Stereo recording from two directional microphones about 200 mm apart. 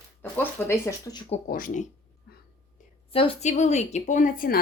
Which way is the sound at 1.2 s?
45° left (ahead or behind).